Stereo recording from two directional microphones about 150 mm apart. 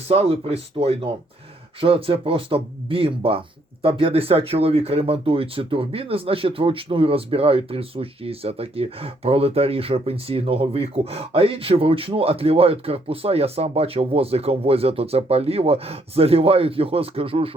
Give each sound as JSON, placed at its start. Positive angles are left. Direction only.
{"t": 0.1, "sound": "speech", "side_deg": -40}